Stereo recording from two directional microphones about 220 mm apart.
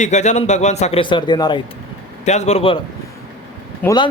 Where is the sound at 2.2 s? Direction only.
30° left (ahead or behind).